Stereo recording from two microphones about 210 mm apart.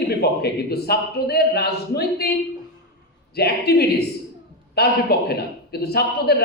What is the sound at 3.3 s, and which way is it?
A man's voice, 50° left (ahead or behind).